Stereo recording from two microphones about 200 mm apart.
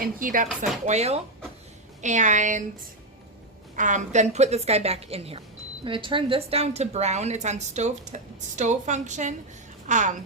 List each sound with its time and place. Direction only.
0.0 s speech: 45° right (ahead or behind)
0.9 s a woman's voice: 35° right (ahead or behind)
3.8 s a woman's voice: 40° right (ahead or behind)